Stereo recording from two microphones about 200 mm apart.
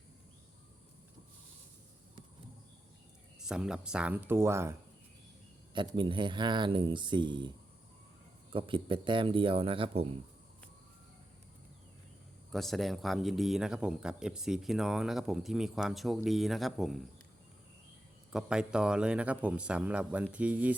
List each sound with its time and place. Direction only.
3.4 s speech: 5° right (ahead or behind)
5.7 s speech: 25° right (ahead or behind)
8.5 s speech: 25° right (ahead or behind)
12.5 s speech: centre (ahead or behind)
18.3 s speech: 5° right (ahead or behind)